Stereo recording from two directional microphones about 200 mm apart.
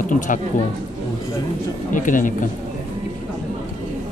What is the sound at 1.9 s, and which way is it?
Speech, 40° left (ahead or behind).